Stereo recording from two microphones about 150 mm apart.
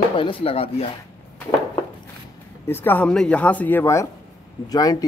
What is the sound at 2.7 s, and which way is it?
Speech, 10° left (ahead or behind).